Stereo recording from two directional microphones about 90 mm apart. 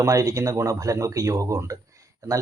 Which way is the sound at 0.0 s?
40° right (ahead or behind).